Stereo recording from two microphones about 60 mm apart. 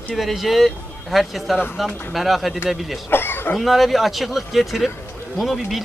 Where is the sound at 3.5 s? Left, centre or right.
Centre.